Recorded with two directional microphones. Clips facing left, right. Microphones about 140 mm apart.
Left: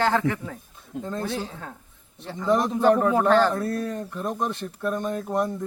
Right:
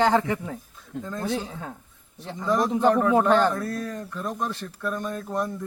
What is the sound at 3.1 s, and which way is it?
Speech, 20° right (ahead or behind).